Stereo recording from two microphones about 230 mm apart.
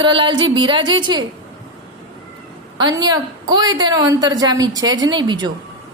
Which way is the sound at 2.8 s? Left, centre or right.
Centre.